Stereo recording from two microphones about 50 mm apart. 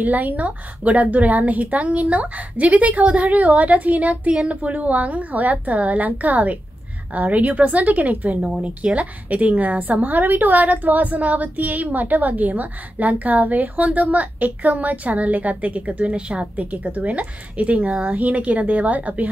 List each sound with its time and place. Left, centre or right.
0.0 s a woman's voice: right
8.4 s speech: centre
8.6 s a woman's voice: right